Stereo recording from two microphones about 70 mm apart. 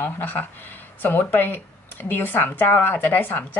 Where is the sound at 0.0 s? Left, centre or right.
Left.